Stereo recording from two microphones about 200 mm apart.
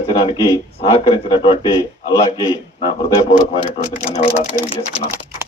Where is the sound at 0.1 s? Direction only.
25° left (ahead or behind).